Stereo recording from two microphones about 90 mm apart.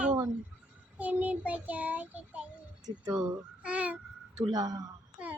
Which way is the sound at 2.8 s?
45° right (ahead or behind).